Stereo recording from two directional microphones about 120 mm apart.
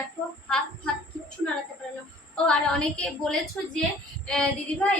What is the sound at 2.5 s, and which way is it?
A woman's voice, 5° left (ahead or behind).